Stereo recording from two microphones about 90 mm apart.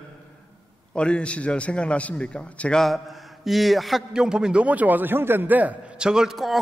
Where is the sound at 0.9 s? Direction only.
10° left (ahead or behind).